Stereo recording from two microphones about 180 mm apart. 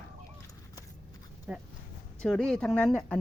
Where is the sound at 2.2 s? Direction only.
5° left (ahead or behind).